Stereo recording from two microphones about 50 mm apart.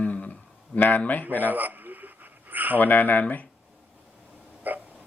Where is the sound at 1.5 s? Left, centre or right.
Right.